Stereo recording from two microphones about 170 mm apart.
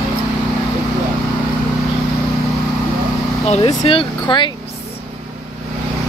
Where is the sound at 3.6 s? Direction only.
30° left (ahead or behind).